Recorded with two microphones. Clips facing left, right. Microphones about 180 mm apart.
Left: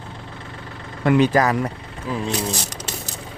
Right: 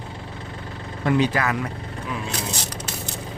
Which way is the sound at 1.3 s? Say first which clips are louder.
Left 6 dB; 40° left (ahead or behind).